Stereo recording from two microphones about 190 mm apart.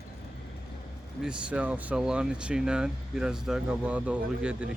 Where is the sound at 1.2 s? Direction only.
5° right (ahead or behind).